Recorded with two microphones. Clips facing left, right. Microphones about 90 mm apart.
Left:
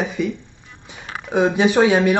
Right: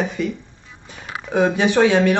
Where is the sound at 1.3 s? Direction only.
20° left (ahead or behind).